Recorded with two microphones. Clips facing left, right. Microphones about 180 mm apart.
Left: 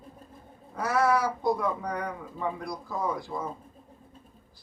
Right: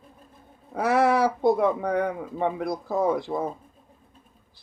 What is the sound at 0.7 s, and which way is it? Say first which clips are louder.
Speech: right 4 dB; 70° right (ahead or behind).